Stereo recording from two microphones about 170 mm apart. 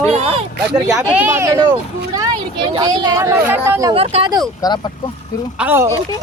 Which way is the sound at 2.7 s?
25° right (ahead or behind).